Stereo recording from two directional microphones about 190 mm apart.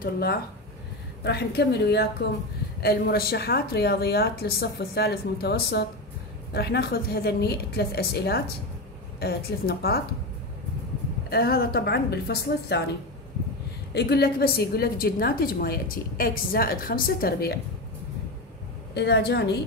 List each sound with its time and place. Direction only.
0.0 s a woman's voice: 50° left (ahead or behind)
11.2 s a woman's voice: 55° left (ahead or behind)
13.9 s a woman's voice: 60° left (ahead or behind)
18.9 s a woman's voice: 60° left (ahead or behind)